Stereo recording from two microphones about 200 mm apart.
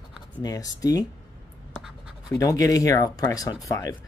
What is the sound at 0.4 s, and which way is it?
Speech, 20° left (ahead or behind).